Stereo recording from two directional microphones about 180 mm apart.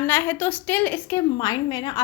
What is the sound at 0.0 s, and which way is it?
A woman's voice, 10° left (ahead or behind).